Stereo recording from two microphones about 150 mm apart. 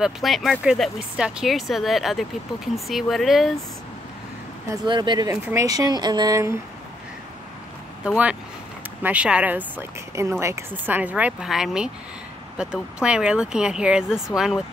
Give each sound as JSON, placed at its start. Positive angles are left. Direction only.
{"t": 0.0, "sound": "speech", "side_deg": 0}
{"t": 4.8, "sound": "speech", "side_deg": -30}
{"t": 5.3, "sound": "speech", "side_deg": -20}
{"t": 8.0, "sound": "speech", "side_deg": -5}
{"t": 9.8, "sound": "speech", "side_deg": -20}